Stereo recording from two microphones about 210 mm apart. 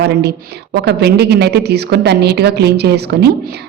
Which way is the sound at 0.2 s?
50° right (ahead or behind).